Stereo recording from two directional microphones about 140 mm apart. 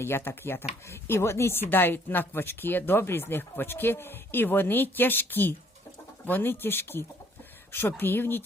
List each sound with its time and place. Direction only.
0.0 s speech: 15° left (ahead or behind)